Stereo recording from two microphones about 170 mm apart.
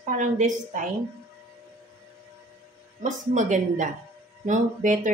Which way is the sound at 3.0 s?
45° right (ahead or behind).